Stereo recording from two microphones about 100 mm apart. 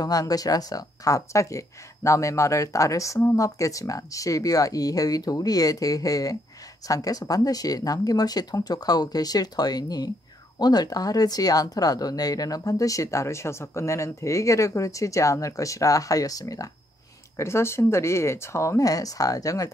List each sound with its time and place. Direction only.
0.0 s speech: 40° left (ahead or behind)